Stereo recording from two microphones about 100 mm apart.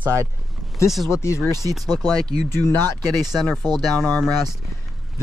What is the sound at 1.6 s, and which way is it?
Speech, 40° right (ahead or behind).